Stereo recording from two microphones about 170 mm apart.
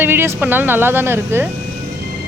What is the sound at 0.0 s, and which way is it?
Speech, 15° right (ahead or behind).